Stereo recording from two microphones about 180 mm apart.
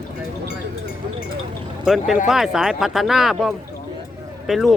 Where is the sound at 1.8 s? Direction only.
Centre (ahead or behind).